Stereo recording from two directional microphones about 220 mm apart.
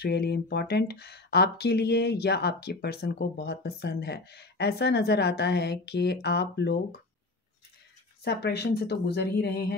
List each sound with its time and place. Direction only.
0.0 s speech: 50° left (ahead or behind)
8.2 s speech: 50° left (ahead or behind)